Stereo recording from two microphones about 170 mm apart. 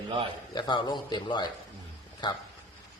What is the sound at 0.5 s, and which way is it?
A man's voice, 25° left (ahead or behind).